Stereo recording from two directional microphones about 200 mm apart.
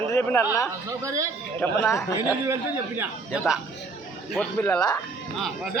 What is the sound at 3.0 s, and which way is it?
Speech, 5° right (ahead or behind).